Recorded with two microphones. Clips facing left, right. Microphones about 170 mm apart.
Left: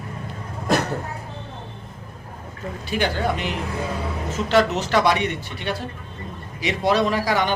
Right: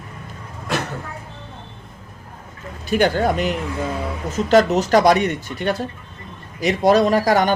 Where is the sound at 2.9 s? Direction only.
45° right (ahead or behind).